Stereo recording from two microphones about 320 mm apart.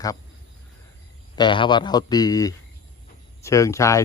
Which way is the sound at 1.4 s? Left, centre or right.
Centre.